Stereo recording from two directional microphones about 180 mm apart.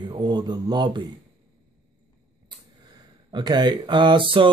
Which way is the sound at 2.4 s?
25° right (ahead or behind).